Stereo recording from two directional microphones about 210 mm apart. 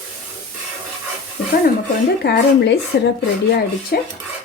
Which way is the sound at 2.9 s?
50° left (ahead or behind).